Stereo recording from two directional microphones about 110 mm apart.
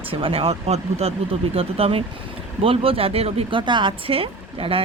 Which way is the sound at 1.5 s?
60° right (ahead or behind).